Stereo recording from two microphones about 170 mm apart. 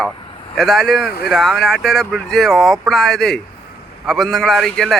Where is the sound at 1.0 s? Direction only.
70° left (ahead or behind).